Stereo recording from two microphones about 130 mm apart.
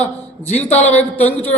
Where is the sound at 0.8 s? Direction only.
10° left (ahead or behind).